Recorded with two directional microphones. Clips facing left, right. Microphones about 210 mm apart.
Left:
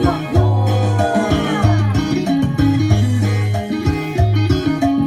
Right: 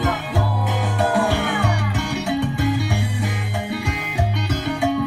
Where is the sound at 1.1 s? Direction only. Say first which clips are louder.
Left 6 dB; 45° left (ahead or behind).